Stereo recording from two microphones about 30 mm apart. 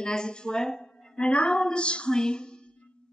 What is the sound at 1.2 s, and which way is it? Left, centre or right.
Speech, left.